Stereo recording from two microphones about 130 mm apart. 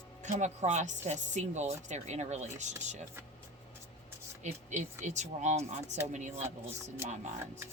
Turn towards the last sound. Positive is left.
turn(degrees=-55)  # may be behind; listen again after turning